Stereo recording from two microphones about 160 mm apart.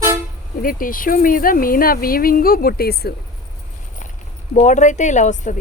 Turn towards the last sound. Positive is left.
turn(degrees=50)  # may be behind; listen again after turning